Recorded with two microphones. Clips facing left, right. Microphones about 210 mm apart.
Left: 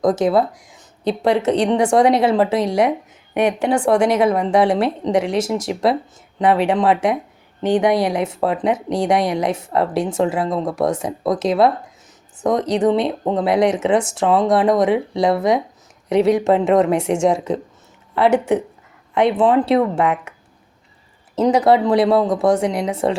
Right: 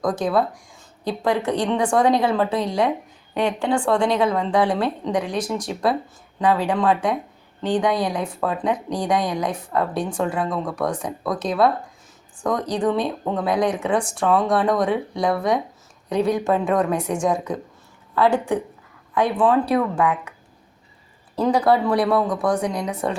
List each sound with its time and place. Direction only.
0.0 s speech: 20° left (ahead or behind)
21.3 s speech: 20° left (ahead or behind)